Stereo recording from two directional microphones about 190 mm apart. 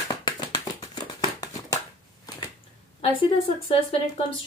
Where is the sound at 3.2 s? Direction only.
30° left (ahead or behind).